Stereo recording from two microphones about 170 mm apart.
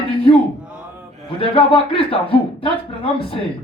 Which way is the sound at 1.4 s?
30° left (ahead or behind).